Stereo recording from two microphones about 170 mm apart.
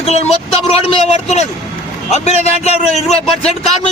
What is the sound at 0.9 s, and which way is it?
A man's voice, 40° left (ahead or behind).